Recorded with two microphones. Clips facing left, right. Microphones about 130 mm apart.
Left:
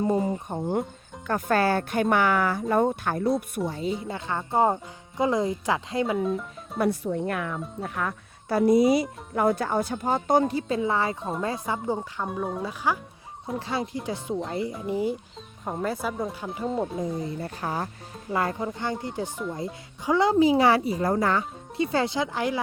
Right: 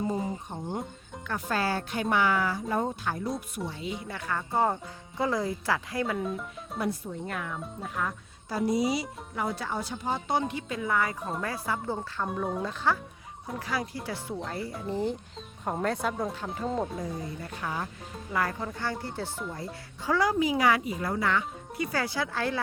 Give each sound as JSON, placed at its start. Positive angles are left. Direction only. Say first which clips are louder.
{"t": 0.1, "sound": "speech", "louder": "left 7 dB", "side_deg": 65}
{"t": 3.7, "sound": "speech", "louder": "left 7 dB", "side_deg": 40}
{"t": 4.1, "sound": "speech", "louder": "left 4 dB", "side_deg": 25}
{"t": 6.1, "sound": "speech", "louder": "left 6 dB", "side_deg": 0}
{"t": 6.7, "sound": "speech", "louder": "left 7 dB", "side_deg": 65}
{"t": 12.3, "sound": "speech", "louder": "left 1 dB", "side_deg": 0}
{"t": 13.6, "sound": "speech", "louder": "left 2 dB", "side_deg": 25}
{"t": 14.8, "sound": "speech", "louder": "left 1 dB", "side_deg": 10}
{"t": 17.4, "sound": "speech", "louder": "left 4 dB", "side_deg": 35}
{"t": 18.3, "sound": "speech", "louder": "left 3 dB", "side_deg": 25}
{"t": 21.8, "sound": "speech", "louder": "left 6 dB", "side_deg": 25}